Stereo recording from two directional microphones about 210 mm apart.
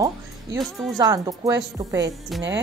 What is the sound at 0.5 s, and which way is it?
Music, centre (ahead or behind).